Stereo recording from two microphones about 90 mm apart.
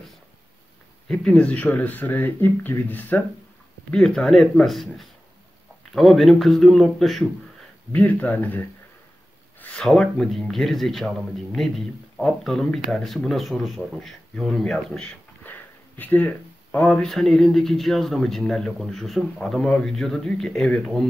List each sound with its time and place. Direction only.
1.0 s speech: 10° left (ahead or behind)
3.9 s speech: 5° left (ahead or behind)
7.9 s speech: 15° left (ahead or behind)
9.6 s a sound: 15° left (ahead or behind)
9.8 s speech: 5° left (ahead or behind)
15.4 s a sound: 20° left (ahead or behind)
17.0 s speech: 5° left (ahead or behind)